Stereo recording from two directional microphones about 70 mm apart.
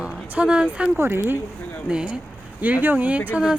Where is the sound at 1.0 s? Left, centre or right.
Right.